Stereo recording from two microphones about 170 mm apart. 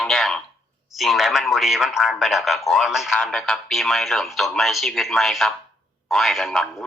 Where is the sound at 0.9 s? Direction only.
Centre (ahead or behind).